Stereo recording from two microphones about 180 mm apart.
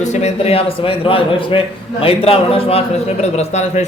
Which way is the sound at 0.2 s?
35° left (ahead or behind).